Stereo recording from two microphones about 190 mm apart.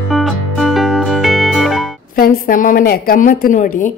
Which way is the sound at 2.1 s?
50° left (ahead or behind).